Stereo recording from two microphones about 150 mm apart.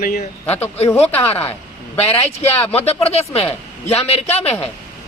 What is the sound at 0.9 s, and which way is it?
Speech, 40° left (ahead or behind).